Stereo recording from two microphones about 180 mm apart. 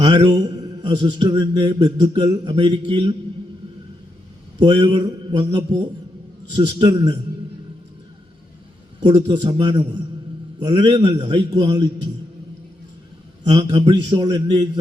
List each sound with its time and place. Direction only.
0.0 s mantra: 25° right (ahead or behind)
4.6 s mantra: 25° right (ahead or behind)
9.0 s mantra: 25° right (ahead or behind)
13.5 s mantra: 25° right (ahead or behind)